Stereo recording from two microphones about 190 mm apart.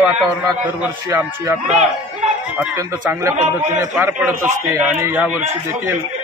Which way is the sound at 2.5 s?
15° right (ahead or behind).